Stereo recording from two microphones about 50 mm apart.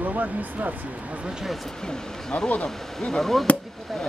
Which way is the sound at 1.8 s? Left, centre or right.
Centre.